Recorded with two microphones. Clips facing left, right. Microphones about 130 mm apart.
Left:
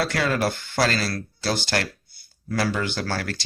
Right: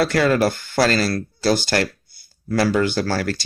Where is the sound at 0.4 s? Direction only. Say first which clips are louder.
Right 5 dB; 40° right (ahead or behind).